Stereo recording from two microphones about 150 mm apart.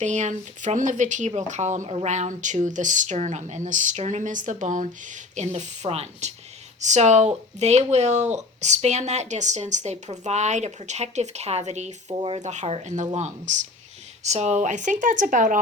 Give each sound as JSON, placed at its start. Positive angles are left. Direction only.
{"t": 0.0, "sound": "speech", "side_deg": -50}
{"t": 12.0, "sound": "speech", "side_deg": -30}
{"t": 12.4, "sound": "speech", "side_deg": -50}